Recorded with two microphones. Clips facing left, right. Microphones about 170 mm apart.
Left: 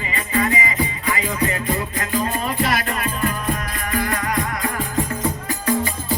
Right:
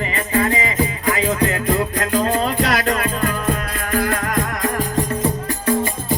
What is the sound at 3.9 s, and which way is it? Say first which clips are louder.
Music: right 3 dB; 50° right (ahead or behind).